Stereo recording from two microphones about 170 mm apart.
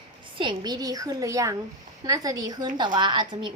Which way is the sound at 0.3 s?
25° right (ahead or behind).